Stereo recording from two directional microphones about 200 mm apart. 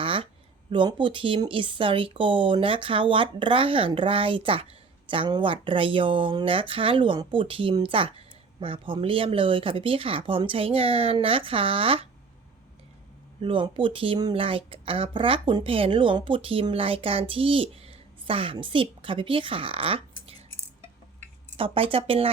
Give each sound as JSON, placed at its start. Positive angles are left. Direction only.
{"t": 0.0, "sound": "a sound", "side_deg": -25}
{"t": 0.7, "sound": "speech", "side_deg": -25}
{"t": 13.4, "sound": "speech", "side_deg": -25}
{"t": 21.5, "sound": "speech", "side_deg": -25}